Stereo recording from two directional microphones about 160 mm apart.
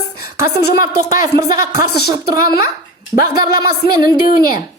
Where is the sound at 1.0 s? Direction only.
55° left (ahead or behind).